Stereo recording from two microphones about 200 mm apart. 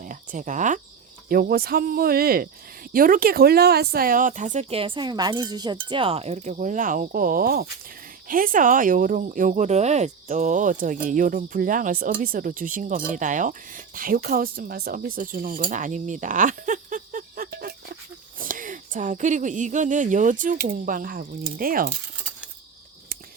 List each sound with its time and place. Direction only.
0.0 s cricket: 40° right (ahead or behind)
1.3 s speech: 50° right (ahead or behind)